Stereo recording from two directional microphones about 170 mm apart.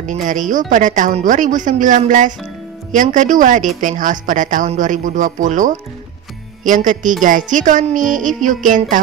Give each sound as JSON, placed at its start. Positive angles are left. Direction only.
{"t": 0.0, "sound": "a woman's voice", "side_deg": -50}